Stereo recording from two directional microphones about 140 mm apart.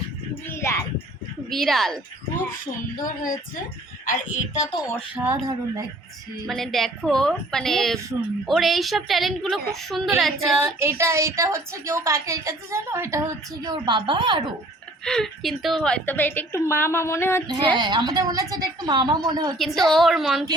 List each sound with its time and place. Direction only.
0.4 s a sound: 20° left (ahead or behind)
1.5 s a woman's voice: centre (ahead or behind)
2.6 s speech: 70° left (ahead or behind)
5.3 s a woman's voice: 25° right (ahead or behind)
6.5 s a woman's voice: centre (ahead or behind)
10.6 s a woman's voice: 15° right (ahead or behind); by 14.5 s 35° right (ahead or behind)
15.0 s a woman's voice: 5° left (ahead or behind)
17.5 s a woman's voice: 30° right (ahead or behind)
19.5 s a woman's voice: centre (ahead or behind)